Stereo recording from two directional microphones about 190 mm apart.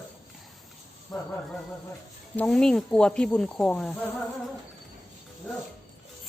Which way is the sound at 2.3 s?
5° left (ahead or behind).